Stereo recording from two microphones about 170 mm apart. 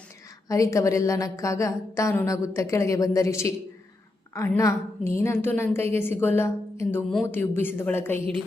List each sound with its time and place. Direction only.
0.4 s a woman's voice: 20° left (ahead or behind)